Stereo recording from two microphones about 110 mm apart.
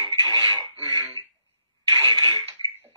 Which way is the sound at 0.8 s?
40° right (ahead or behind).